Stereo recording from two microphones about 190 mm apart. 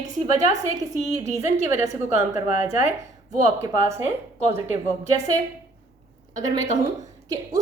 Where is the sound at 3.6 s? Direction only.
15° right (ahead or behind).